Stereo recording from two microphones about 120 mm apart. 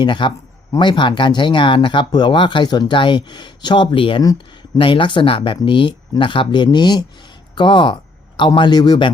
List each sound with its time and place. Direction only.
0.0 s speech: 40° left (ahead or behind)